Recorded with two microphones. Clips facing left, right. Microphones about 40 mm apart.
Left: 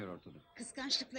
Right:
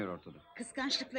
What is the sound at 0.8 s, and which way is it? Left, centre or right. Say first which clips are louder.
Speech: right 3 dB; centre.